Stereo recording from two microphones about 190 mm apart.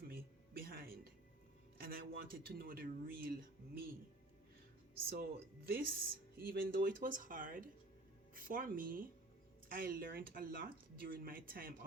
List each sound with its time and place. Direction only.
0.1 s music: 50° right (ahead or behind)
1.8 s speech: 50° right (ahead or behind)
5.0 s speech: 55° right (ahead or behind)